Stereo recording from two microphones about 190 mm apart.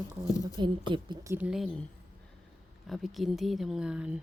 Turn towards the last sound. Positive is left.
turn(degrees=-5)  # may be behind; listen again after turning